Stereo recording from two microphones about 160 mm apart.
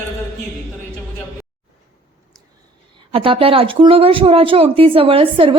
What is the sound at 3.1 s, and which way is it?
Speech, 35° right (ahead or behind).